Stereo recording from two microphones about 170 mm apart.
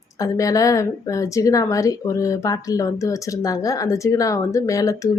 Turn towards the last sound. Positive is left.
turn(degrees=20)  # may be behind; listen again after turning